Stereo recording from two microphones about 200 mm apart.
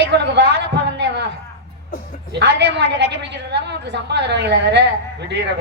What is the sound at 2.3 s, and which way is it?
A woman's voice, 60° right (ahead or behind).